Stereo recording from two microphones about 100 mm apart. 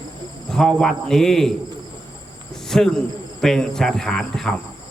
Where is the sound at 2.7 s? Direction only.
5° left (ahead or behind).